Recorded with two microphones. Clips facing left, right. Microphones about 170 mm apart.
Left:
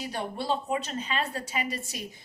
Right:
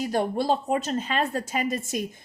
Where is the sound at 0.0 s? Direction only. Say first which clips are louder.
Right 8 dB; 45° right (ahead or behind).